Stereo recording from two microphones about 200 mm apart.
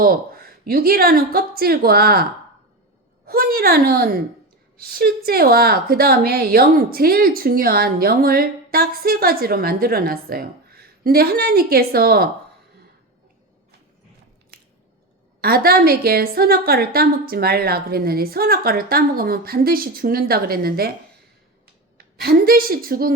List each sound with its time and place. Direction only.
0.0 s a woman's voice: 45° right (ahead or behind)
3.2 s a woman's voice: 50° right (ahead or behind)
15.4 s a woman's voice: 50° right (ahead or behind)
21.9 s a woman's voice: 50° right (ahead or behind)